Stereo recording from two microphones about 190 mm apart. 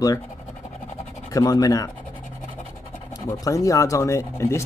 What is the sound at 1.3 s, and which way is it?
Speech, 20° left (ahead or behind).